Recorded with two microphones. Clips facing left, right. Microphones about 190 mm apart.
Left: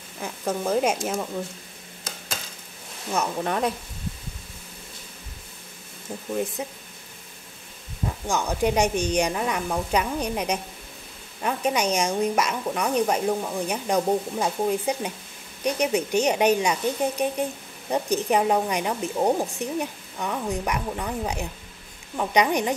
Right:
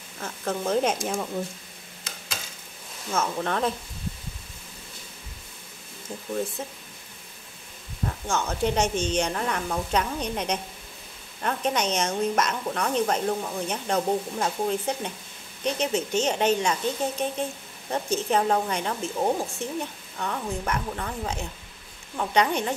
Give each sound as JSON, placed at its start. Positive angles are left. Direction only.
{"t": 0.2, "sound": "a woman's voice", "side_deg": 10}
{"t": 3.1, "sound": "speech", "side_deg": 15}
{"t": 8.3, "sound": "speech", "side_deg": 15}